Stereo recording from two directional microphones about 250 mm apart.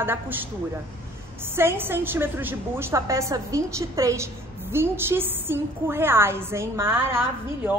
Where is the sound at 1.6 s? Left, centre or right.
Centre.